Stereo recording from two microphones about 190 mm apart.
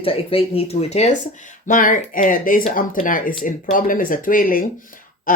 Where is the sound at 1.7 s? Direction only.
45° left (ahead or behind).